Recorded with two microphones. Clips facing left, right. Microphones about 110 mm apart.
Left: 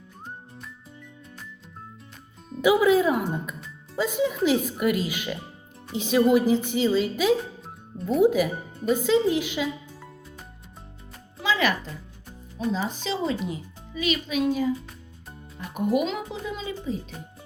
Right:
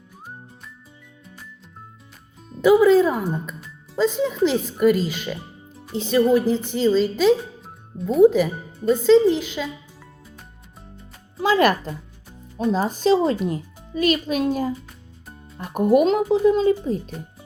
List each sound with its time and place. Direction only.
2.6 s speech: 10° left (ahead or behind)
11.4 s speech: 45° right (ahead or behind)